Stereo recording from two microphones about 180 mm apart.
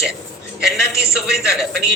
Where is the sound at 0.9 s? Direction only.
60° right (ahead or behind).